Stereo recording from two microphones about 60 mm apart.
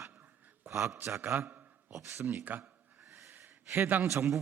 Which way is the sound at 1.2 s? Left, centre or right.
Right.